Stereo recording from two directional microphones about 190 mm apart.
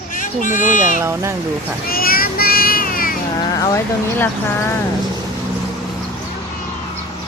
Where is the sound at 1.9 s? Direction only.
50° left (ahead or behind).